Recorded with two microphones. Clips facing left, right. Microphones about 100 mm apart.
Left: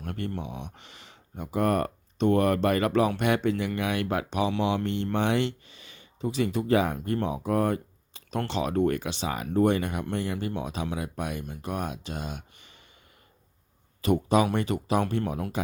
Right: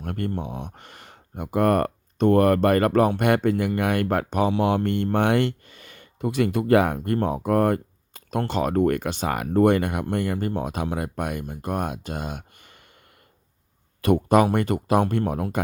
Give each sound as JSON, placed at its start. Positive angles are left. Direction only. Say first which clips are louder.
{"t": 0.0, "sound": "a sound", "louder": "right 5 dB", "side_deg": -50}
{"t": 0.3, "sound": "speech", "louder": "right 5 dB", "side_deg": -50}
{"t": 14.0, "sound": "speech", "louder": "right 5 dB", "side_deg": -55}